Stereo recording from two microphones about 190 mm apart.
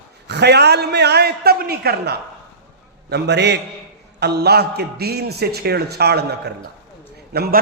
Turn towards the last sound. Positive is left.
turn(degrees=-55)  # may be behind; listen again after turning